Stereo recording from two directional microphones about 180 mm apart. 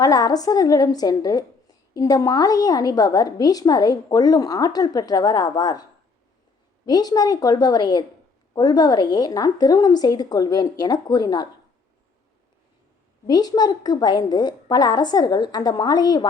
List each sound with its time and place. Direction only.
0.0 s a woman's voice: 20° left (ahead or behind)
6.8 s a woman's voice: 20° left (ahead or behind)
13.2 s a woman's voice: 20° left (ahead or behind)